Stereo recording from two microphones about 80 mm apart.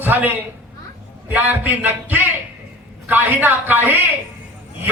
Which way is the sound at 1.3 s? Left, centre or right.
Right.